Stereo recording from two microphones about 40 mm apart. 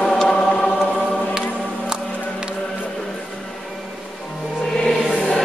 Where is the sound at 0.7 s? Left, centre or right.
Centre.